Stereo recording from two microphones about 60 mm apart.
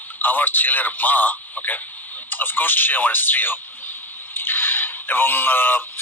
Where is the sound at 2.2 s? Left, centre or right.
Left.